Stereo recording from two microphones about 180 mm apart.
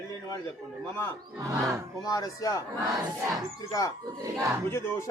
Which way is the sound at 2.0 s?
20° left (ahead or behind).